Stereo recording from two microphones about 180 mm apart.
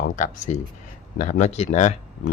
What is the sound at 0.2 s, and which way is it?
Speech, 40° left (ahead or behind).